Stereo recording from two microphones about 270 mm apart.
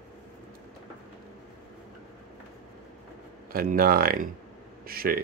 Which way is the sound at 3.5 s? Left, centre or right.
Right.